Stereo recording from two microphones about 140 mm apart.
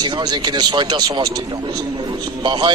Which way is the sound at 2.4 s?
35° right (ahead or behind).